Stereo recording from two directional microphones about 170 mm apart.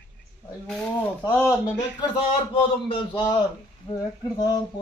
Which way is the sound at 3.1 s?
25° left (ahead or behind).